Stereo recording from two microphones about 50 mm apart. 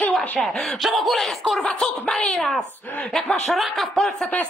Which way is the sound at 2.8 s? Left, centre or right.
Left.